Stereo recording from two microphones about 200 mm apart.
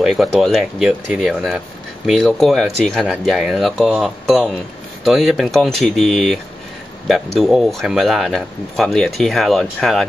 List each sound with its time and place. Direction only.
0.0 s speech: centre (ahead or behind)